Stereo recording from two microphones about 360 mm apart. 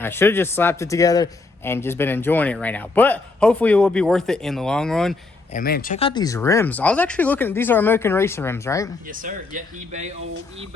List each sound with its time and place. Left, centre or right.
0.0 s a man's voice: centre
5.5 s speech: left; by 8.9 s centre
9.0 s speech: right